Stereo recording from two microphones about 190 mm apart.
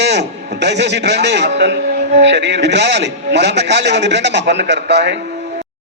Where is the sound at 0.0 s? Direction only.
65° right (ahead or behind).